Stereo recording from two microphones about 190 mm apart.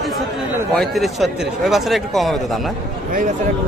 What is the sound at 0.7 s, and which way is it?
Speech, centre (ahead or behind).